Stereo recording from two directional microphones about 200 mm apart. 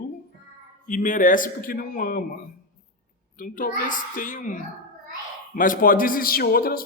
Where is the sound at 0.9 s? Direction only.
40° left (ahead or behind).